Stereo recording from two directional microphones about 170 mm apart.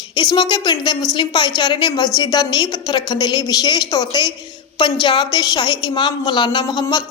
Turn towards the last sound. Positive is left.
turn(degrees=25)  # may be behind; listen again after turning